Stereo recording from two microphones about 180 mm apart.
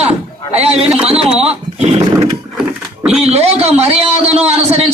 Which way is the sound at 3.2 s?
35° right (ahead or behind).